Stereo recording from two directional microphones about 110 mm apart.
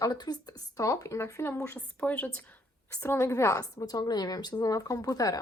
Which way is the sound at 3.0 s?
25° left (ahead or behind).